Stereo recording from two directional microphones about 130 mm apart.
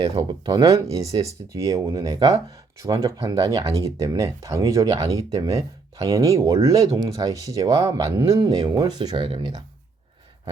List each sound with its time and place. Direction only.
0.0 s speech: 35° right (ahead or behind)